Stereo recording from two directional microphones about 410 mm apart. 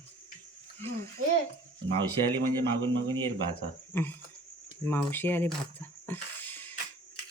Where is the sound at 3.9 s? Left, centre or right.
Centre.